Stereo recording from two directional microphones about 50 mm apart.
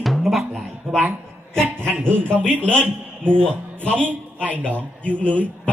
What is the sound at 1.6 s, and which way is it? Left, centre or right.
Speech, right.